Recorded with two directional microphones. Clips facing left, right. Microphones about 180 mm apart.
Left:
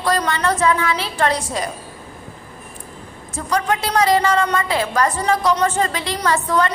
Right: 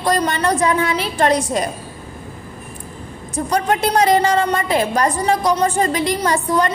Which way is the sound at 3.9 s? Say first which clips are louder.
Right 1 dB; 25° right (ahead or behind).